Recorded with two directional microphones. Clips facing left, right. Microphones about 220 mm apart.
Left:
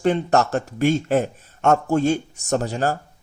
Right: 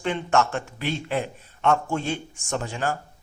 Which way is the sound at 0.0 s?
40° left (ahead or behind).